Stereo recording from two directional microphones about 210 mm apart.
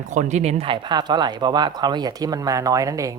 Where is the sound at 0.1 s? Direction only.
35° right (ahead or behind).